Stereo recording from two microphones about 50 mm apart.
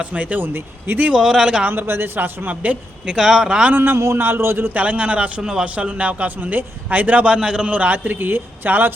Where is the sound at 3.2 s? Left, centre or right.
Centre.